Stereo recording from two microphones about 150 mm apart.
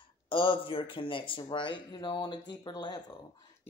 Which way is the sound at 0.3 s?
35° left (ahead or behind).